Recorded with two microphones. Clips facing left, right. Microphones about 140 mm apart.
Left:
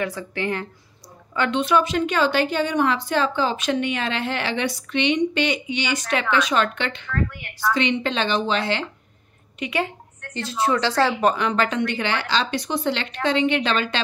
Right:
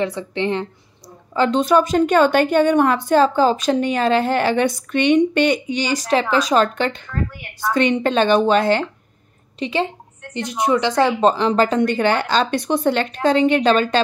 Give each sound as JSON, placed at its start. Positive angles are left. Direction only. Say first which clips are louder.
{"t": 0.0, "sound": "speech", "louder": "right 5 dB", "side_deg": -25}
{"t": 1.3, "sound": "a woman's voice", "louder": "right 5 dB", "side_deg": -35}
{"t": 9.6, "sound": "a woman's voice", "louder": "right 4 dB", "side_deg": -25}